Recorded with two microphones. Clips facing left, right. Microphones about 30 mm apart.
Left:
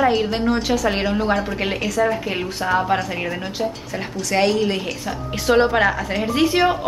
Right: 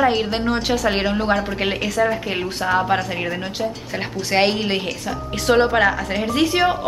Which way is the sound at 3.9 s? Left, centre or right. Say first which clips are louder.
Right 3 dB; right.